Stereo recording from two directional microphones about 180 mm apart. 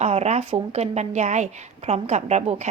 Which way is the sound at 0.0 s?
35° right (ahead or behind).